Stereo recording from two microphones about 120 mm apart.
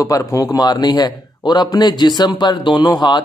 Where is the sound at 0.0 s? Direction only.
25° left (ahead or behind).